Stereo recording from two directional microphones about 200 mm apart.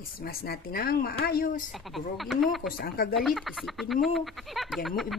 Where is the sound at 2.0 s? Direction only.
Centre (ahead or behind).